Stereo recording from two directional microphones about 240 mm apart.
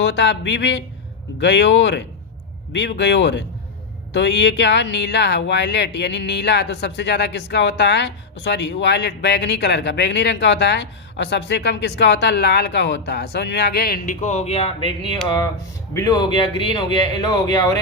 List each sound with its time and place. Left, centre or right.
0.0 s speech: left; by 17.7 s centre